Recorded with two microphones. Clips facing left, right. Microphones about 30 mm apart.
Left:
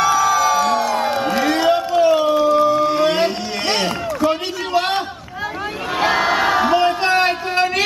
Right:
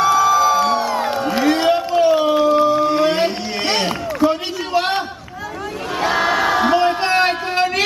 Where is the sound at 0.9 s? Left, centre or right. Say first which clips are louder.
Left 1 dB; centre.